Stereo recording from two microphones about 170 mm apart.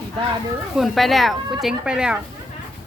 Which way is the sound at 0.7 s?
Centre (ahead or behind).